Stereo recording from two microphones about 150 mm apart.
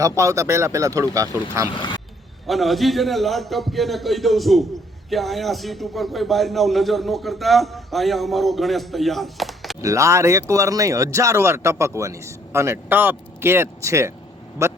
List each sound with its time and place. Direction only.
0.0 s speech: 20° right (ahead or behind)
1.7 s speech: 30° left (ahead or behind)
2.5 s speech: centre (ahead or behind)
9.8 s speech: 20° right (ahead or behind)